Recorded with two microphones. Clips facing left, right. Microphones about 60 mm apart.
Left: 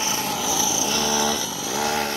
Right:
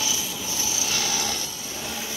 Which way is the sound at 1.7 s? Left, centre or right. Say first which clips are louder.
Left 12 dB; left.